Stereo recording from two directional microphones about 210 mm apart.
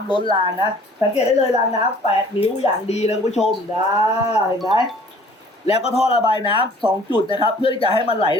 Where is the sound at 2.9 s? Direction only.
30° left (ahead or behind).